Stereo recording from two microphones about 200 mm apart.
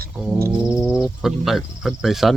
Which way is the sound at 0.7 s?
5° right (ahead or behind).